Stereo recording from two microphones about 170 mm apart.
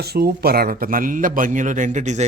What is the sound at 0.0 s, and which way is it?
A man's voice, 70° right (ahead or behind).